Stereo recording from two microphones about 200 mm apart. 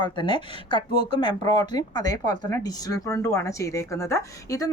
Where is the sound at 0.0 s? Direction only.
25° left (ahead or behind).